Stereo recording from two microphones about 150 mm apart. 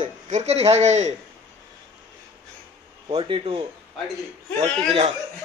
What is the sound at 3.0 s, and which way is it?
Speech, 35° right (ahead or behind).